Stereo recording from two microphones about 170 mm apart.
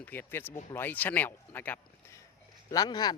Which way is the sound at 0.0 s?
10° left (ahead or behind).